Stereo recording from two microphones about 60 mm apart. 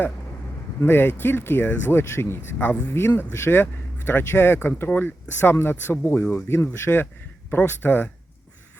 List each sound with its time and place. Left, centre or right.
0.8 s speech: left
3.2 s speech: left
7.5 s speech: left